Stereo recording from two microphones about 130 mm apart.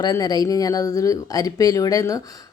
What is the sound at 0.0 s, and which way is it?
Speech, 30° left (ahead or behind).